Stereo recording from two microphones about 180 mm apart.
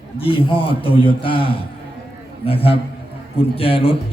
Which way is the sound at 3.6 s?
30° left (ahead or behind).